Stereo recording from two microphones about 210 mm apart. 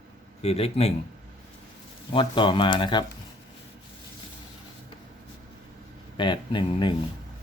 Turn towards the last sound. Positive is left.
turn(degrees=20)  # may be behind; listen again after turning